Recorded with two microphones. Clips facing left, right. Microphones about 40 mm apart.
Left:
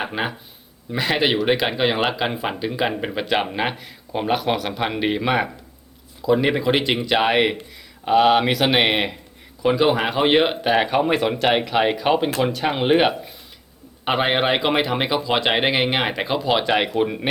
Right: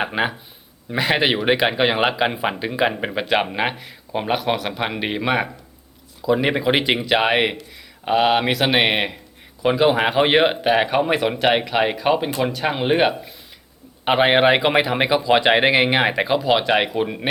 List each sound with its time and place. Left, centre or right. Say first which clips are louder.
0.0 s speech: right 3 dB; centre
14.0 s speech: right 4 dB; centre